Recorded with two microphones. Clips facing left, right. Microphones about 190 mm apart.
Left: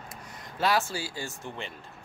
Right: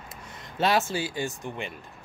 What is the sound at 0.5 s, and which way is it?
Speech, 25° right (ahead or behind).